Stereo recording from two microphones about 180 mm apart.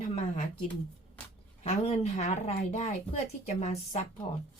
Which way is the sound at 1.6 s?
35° left (ahead or behind).